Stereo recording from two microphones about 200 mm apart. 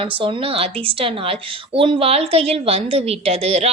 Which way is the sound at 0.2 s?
25° right (ahead or behind).